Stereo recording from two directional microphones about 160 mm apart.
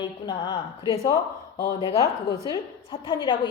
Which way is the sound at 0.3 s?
30° left (ahead or behind).